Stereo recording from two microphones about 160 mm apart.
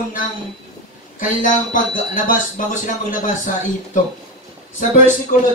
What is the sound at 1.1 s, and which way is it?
Speech, 55° left (ahead or behind).